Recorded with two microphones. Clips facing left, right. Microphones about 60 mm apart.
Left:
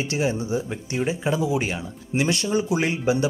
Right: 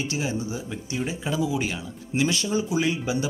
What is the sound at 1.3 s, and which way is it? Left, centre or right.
Speech, left.